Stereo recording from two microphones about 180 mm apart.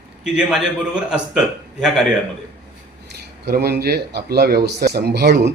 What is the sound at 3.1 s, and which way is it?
Speech, 60° right (ahead or behind).